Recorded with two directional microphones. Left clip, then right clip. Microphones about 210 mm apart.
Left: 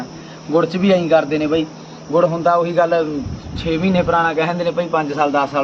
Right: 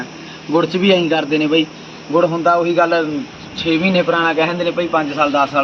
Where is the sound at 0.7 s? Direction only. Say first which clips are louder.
Even; 20° left (ahead or behind).